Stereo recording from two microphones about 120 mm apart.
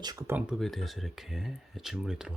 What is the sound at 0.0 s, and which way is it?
Speech, 30° right (ahead or behind).